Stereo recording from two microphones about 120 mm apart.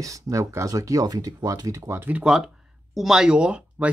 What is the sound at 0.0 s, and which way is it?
Speech, 25° right (ahead or behind).